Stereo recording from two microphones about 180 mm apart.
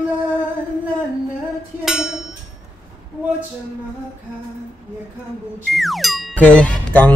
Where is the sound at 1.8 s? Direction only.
Centre (ahead or behind).